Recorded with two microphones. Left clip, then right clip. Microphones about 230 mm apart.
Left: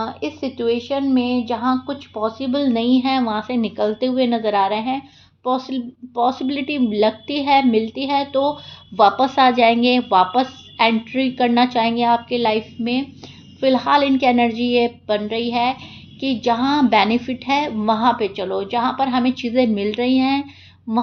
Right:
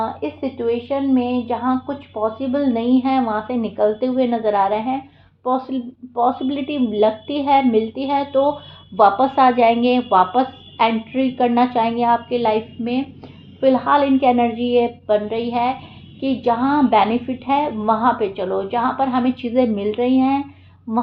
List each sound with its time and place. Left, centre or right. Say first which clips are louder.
0.0 s a woman's voice: right 2 dB; left